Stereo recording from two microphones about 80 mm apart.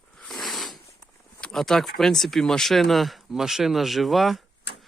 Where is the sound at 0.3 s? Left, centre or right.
Centre.